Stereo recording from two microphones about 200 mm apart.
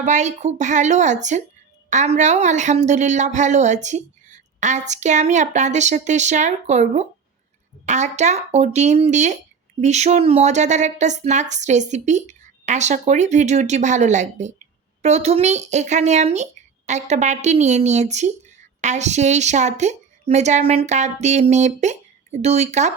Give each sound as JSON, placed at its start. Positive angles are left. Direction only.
{"t": 0.0, "sound": "a woman's voice", "side_deg": -35}